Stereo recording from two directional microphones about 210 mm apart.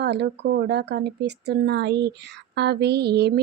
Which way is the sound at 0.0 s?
55° right (ahead or behind).